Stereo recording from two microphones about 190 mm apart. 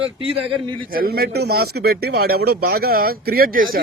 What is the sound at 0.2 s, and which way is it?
Speech, 30° right (ahead or behind).